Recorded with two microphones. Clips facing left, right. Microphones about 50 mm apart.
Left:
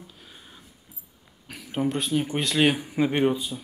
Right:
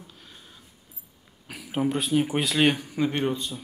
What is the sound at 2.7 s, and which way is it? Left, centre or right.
Speech, centre.